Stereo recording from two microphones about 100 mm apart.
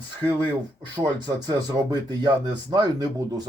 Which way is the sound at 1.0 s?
45° right (ahead or behind).